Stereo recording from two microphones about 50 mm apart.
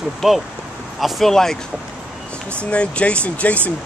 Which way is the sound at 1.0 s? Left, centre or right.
Centre.